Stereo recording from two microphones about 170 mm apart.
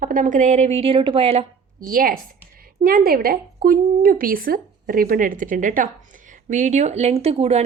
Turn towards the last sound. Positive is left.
turn(degrees=-40)  # may be behind; listen again after turning